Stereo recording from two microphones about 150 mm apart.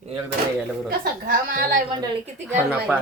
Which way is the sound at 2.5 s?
10° right (ahead or behind).